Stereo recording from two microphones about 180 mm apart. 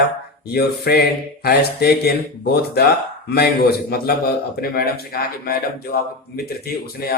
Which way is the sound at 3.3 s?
60° left (ahead or behind).